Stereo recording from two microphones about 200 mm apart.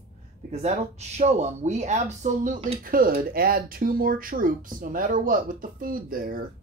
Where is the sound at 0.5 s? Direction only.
35° right (ahead or behind).